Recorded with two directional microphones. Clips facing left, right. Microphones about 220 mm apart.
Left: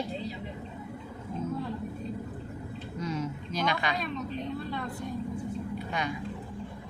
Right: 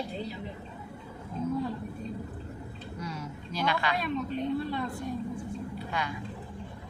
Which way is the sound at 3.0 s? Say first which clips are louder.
Left 6 dB; 20° left (ahead or behind).